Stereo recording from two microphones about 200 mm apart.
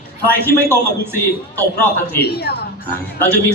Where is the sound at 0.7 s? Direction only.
15° right (ahead or behind).